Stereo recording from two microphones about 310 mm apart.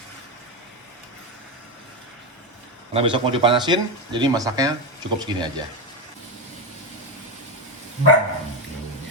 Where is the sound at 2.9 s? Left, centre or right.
Centre.